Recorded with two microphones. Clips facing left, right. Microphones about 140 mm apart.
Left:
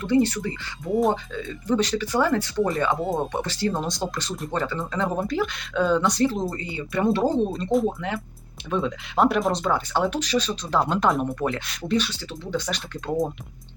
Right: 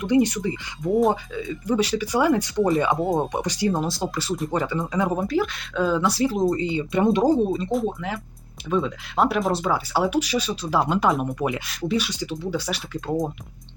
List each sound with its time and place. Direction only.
0.0 s speech: 15° right (ahead or behind)
0.9 s speech: 5° right (ahead or behind)
3.7 s speech: 5° right (ahead or behind)
5.2 s speech: centre (ahead or behind)
6.4 s speech: 20° right (ahead or behind); by 13.2 s 5° right (ahead or behind)